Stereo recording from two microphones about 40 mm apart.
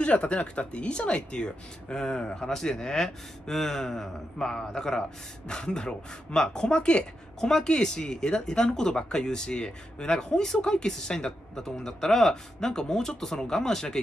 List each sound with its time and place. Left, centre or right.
0.0 s a woman's voice: left; by 13.9 s centre